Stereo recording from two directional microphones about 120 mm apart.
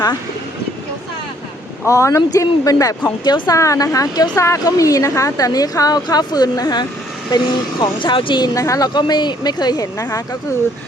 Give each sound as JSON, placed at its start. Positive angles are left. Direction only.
{"t": 1.8, "sound": "speech", "side_deg": 25}
{"t": 8.5, "sound": "speech", "side_deg": 25}